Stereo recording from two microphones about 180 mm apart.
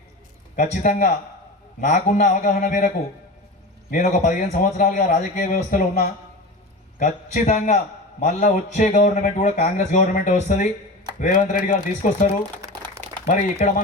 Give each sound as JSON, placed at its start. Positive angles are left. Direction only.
{"t": 0.5, "sound": "a man's voice", "side_deg": 45}
{"t": 3.9, "sound": "a man's voice", "side_deg": 45}
{"t": 13.2, "sound": "a man's voice", "side_deg": 45}